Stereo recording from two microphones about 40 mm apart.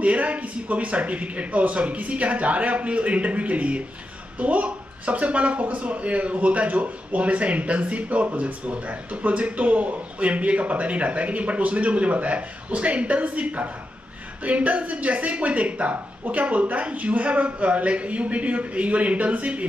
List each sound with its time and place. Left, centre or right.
0.0 s speech: right